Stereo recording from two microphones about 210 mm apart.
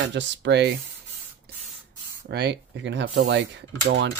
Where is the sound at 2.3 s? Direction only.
50° right (ahead or behind).